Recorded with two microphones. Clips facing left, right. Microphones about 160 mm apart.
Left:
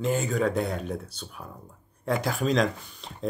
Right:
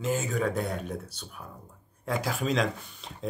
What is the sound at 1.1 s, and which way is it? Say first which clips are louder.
Speech: left 3 dB; 30° left (ahead or behind).